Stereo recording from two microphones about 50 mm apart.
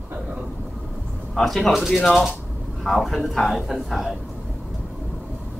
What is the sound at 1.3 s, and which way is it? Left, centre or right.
A man's voice, centre.